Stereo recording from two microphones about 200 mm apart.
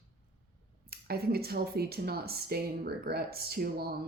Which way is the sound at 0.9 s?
50° right (ahead or behind).